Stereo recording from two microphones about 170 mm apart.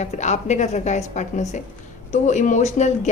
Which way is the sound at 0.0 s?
45° left (ahead or behind).